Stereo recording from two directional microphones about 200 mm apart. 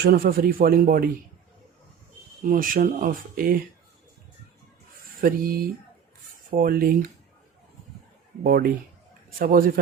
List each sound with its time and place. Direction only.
0.0 s speech: 50° right (ahead or behind)
2.4 s speech: 40° right (ahead or behind)
5.2 s speech: 50° right (ahead or behind)
8.4 s speech: 45° right (ahead or behind)